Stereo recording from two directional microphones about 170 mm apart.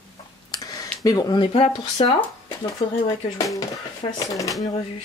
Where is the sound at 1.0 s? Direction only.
25° left (ahead or behind).